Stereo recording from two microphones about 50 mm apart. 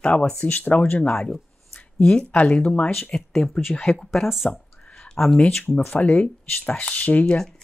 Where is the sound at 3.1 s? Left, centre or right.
Centre.